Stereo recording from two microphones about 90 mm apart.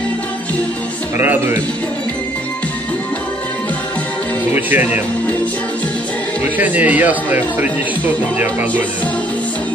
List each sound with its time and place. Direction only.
1.1 s speech: 25° right (ahead or behind)
4.6 s speech: 20° right (ahead or behind)
6.6 s speech: 15° right (ahead or behind)